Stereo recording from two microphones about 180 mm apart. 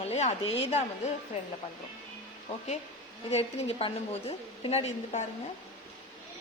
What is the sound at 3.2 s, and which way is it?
A woman's voice, 35° left (ahead or behind).